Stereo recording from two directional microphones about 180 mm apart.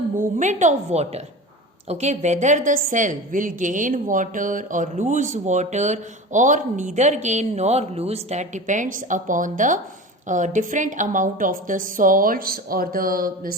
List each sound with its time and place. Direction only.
0.2 s a woman's voice: 45° right (ahead or behind)